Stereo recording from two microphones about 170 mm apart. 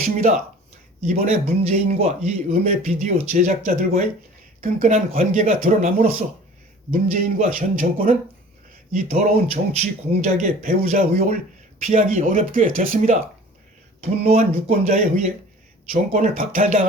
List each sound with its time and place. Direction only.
0.0 s speech: 45° right (ahead or behind)
14.0 s speech: 40° right (ahead or behind)